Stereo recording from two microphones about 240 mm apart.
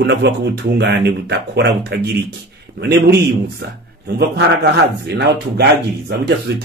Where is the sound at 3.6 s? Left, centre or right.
Right.